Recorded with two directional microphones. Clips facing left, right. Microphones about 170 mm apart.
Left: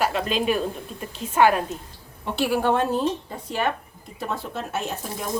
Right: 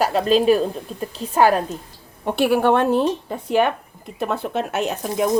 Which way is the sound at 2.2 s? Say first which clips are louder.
Right 5 dB; 55° right (ahead or behind).